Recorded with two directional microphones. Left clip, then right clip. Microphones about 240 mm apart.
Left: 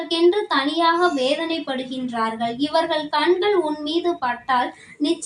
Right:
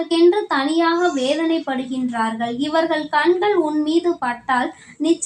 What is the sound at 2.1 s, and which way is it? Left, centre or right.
A woman's voice, right.